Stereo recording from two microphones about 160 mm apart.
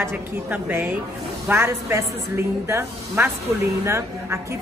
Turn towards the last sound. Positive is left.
turn(degrees=-15)  # may be behind; listen again after turning